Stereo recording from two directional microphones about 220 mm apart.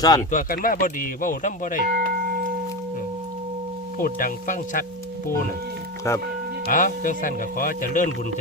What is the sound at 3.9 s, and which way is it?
Speech, 40° left (ahead or behind).